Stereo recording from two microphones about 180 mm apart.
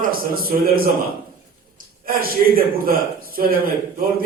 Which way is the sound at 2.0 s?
55° right (ahead or behind).